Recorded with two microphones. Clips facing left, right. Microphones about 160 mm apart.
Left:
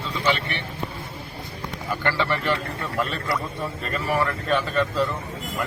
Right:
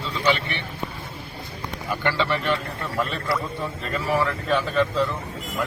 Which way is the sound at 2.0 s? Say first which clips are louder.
Right 1 dB; 15° right (ahead or behind).